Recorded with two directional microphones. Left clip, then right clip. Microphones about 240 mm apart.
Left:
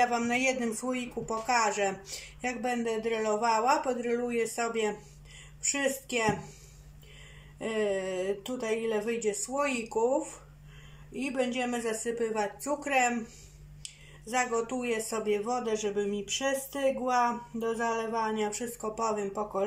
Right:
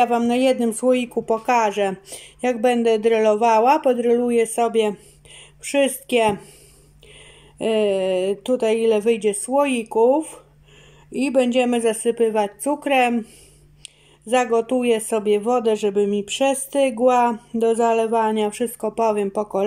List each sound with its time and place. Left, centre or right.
0.0 s speech: right
7.6 s speech: right
14.3 s speech: right